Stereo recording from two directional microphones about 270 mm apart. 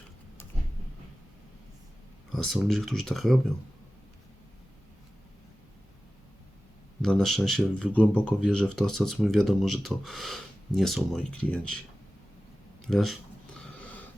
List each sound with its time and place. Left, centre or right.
2.3 s speech: centre
7.0 s speech: centre
12.9 s speech: centre